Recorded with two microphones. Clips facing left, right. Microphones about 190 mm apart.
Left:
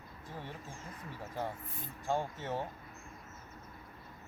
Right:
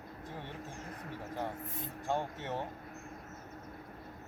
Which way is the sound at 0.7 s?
65° right (ahead or behind).